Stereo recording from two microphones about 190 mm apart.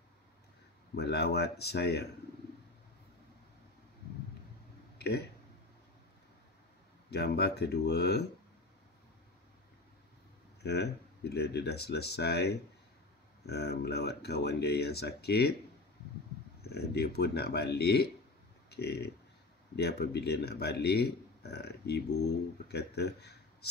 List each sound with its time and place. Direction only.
0.9 s speech: 60° left (ahead or behind)
4.9 s a sound: 60° left (ahead or behind)
7.1 s speech: 60° left (ahead or behind)
10.6 s speech: 60° left (ahead or behind)
16.6 s speech: 55° left (ahead or behind)